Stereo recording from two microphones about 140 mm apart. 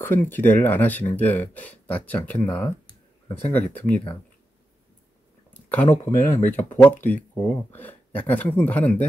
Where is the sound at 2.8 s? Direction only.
35° left (ahead or behind).